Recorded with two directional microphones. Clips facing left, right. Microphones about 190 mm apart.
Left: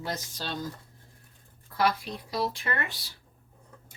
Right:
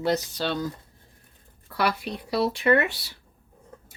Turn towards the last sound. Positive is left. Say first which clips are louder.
# right 12 dB
turn(degrees=-70)  # may be behind; listen again after turning